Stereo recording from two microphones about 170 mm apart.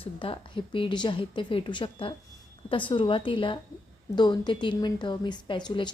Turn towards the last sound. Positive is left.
turn(degrees=25)  # may be behind; listen again after turning